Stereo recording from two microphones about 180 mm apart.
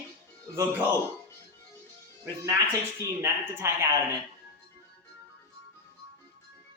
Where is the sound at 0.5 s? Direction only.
15° right (ahead or behind).